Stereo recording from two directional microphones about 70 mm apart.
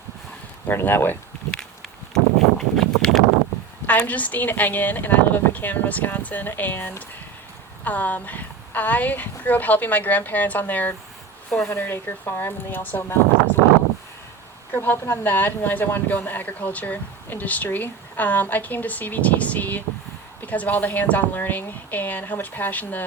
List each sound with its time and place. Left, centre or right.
0.7 s speech: left
1.5 s a sound: centre
3.8 s speech: left
14.7 s speech: left